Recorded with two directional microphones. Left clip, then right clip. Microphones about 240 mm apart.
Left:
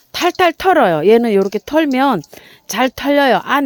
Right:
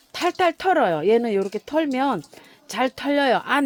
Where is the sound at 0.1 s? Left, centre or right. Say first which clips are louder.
Left 7 dB; left.